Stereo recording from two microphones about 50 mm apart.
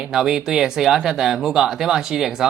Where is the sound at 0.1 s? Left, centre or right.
Centre.